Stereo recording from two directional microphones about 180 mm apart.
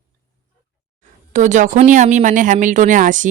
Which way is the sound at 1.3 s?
45° right (ahead or behind).